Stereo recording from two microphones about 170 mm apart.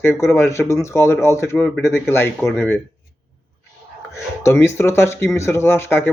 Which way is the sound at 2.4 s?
Centre (ahead or behind).